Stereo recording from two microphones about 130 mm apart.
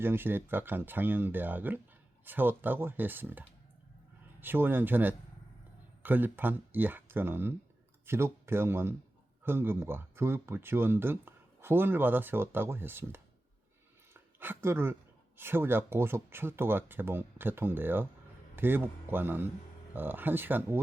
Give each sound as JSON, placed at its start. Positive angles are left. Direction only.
{"t": 0.0, "sound": "speech", "side_deg": -15}
{"t": 14.1, "sound": "a sound", "side_deg": -15}
{"t": 15.4, "sound": "speech", "side_deg": -15}